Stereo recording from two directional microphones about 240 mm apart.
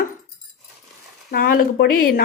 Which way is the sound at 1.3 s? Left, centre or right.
Left.